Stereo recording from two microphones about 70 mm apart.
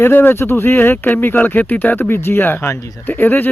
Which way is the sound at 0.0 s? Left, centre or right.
Left.